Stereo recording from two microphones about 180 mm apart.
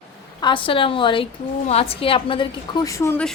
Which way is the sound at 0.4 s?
30° left (ahead or behind).